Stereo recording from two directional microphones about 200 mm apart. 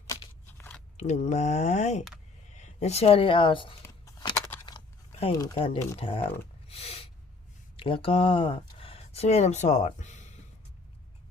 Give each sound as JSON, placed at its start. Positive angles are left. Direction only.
{"t": 0.1, "sound": "scissors", "side_deg": 15}
{"t": 0.9, "sound": "speech", "side_deg": 35}
{"t": 3.8, "sound": "a sound", "side_deg": 20}
{"t": 5.3, "sound": "speech", "side_deg": 20}
{"t": 6.7, "sound": "a sound", "side_deg": 30}
{"t": 7.8, "sound": "speech", "side_deg": 25}